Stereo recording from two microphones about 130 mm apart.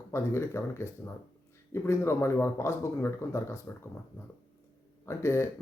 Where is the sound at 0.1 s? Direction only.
20° left (ahead or behind).